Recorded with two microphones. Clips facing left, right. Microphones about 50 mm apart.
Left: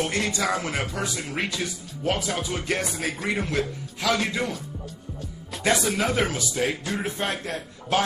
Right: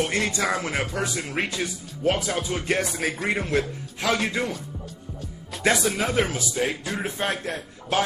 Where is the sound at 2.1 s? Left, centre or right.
Centre.